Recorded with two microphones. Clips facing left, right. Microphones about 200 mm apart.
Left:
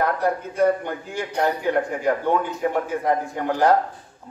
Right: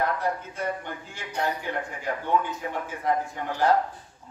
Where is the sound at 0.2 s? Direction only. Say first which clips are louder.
Left 9 dB; 40° left (ahead or behind).